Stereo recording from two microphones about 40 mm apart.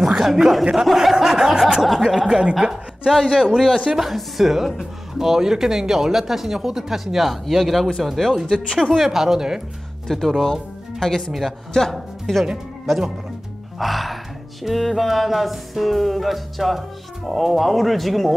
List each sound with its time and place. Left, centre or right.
0.0 s speech: centre
0.8 s music: centre
1.1 s speech: centre
1.8 s music: centre
2.1 s speech: centre
8.0 s music: centre
8.7 s speech: centre
10.0 s speech: centre
11.9 s music: centre
13.7 s music: centre